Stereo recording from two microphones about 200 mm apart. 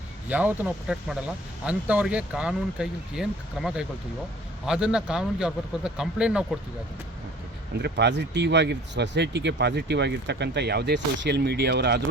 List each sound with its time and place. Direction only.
0.3 s speech: 10° right (ahead or behind)
7.8 s speech: 55° right (ahead or behind)